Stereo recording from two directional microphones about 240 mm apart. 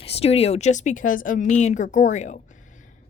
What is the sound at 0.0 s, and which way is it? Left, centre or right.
A woman's voice, left.